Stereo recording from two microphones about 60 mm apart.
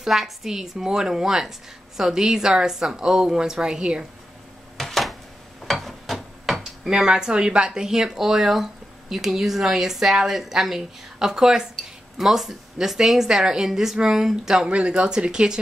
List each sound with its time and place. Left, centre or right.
0.0 s a woman's voice: centre
4.7 s a sound: centre
9.1 s a woman's voice: centre